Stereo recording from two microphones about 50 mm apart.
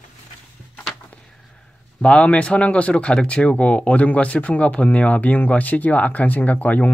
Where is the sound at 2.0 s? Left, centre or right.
Left.